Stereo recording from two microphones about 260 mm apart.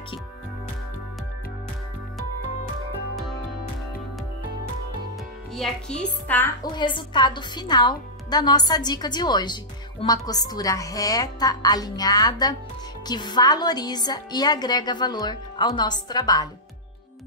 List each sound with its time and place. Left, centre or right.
5.6 s a woman's voice: centre